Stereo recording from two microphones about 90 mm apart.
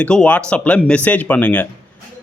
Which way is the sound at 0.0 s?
10° left (ahead or behind).